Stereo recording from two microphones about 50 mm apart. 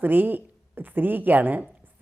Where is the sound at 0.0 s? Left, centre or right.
Right.